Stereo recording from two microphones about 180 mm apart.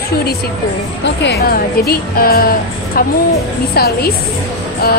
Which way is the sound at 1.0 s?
70° left (ahead or behind).